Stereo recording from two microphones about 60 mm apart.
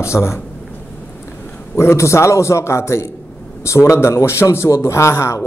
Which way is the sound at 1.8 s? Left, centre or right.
Left.